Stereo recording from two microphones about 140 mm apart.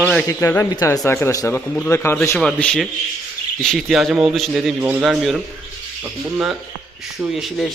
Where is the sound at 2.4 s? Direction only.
5° left (ahead or behind).